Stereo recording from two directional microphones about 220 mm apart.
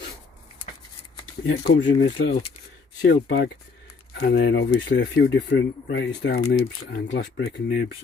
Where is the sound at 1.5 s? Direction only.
50° left (ahead or behind).